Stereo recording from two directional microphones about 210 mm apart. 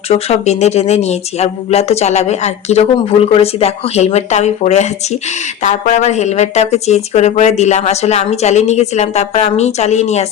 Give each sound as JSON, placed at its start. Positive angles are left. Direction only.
{"t": 0.1, "sound": "speech", "side_deg": 30}